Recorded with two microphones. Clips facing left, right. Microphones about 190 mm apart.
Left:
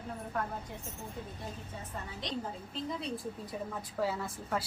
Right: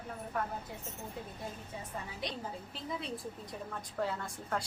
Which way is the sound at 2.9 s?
Centre (ahead or behind).